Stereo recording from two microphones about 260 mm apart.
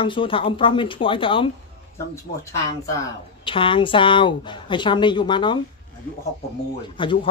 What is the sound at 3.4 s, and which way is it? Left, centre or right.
A man's voice, centre.